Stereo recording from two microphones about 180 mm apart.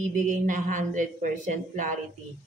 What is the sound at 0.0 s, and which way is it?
Speech, 45° right (ahead or behind).